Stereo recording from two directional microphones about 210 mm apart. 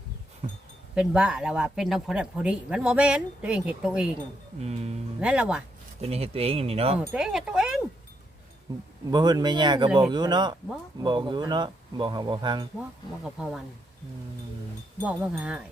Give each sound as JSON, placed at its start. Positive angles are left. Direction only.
{"t": 0.4, "sound": "wind chime", "side_deg": -30}
{"t": 0.9, "sound": "speech", "side_deg": -5}
{"t": 4.6, "sound": "speech", "side_deg": -30}
{"t": 5.2, "sound": "speech", "side_deg": -5}
{"t": 6.0, "sound": "speech", "side_deg": -30}
{"t": 7.0, "sound": "speech", "side_deg": -5}
{"t": 9.0, "sound": "speech", "side_deg": -20}
{"t": 13.2, "sound": "speech", "side_deg": -5}
{"t": 15.0, "sound": "speech", "side_deg": -5}